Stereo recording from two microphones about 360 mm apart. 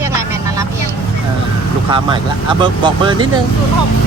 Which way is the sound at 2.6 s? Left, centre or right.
Centre.